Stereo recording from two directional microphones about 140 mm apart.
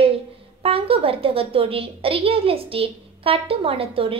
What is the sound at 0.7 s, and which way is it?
A woman's voice, 40° right (ahead or behind).